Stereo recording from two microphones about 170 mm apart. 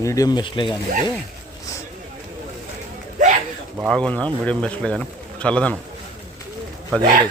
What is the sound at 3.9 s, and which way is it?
Speech, 5° left (ahead or behind).